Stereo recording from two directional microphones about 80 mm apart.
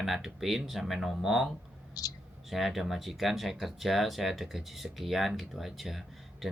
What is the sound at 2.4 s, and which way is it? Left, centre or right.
Speech, centre.